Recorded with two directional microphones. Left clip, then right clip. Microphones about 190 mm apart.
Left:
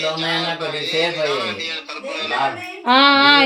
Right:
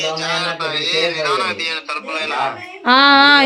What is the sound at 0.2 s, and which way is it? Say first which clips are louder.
A man's voice: right 1 dB; 50° right (ahead or behind).